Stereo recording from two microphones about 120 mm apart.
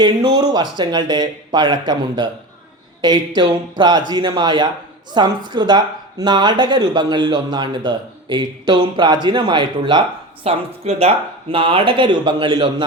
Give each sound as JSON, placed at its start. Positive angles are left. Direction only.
{"t": 0.0, "sound": "speech", "side_deg": -35}
{"t": 10.4, "sound": "speech", "side_deg": -55}